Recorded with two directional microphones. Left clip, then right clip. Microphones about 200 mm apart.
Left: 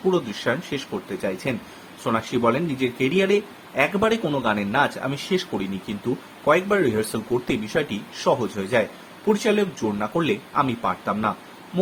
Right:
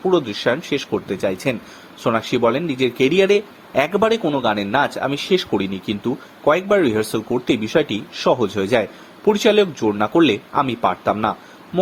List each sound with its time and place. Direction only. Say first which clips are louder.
0.1 s speech: right 4 dB; 35° right (ahead or behind)